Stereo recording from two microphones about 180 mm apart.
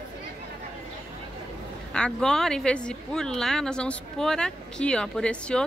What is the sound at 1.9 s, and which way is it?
Speech, 5° left (ahead or behind).